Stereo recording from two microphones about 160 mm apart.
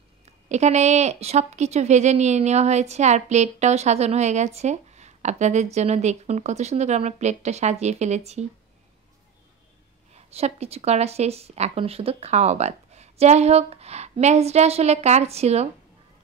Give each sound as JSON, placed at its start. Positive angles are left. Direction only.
{"t": 0.2, "sound": "a woman's voice", "side_deg": -45}
{"t": 10.1, "sound": "speech", "side_deg": -40}